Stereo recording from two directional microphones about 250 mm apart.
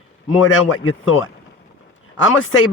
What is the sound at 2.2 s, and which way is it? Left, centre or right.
Speech, left.